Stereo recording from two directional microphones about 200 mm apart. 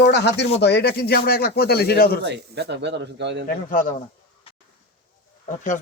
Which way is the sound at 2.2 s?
60° right (ahead or behind).